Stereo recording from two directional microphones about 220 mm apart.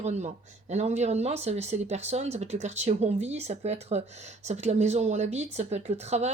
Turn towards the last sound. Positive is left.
turn(degrees=-30)  # may be behind; listen again after turning